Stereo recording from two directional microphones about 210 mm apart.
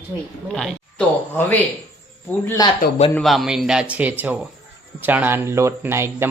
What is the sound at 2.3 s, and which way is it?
Speech, 5° left (ahead or behind).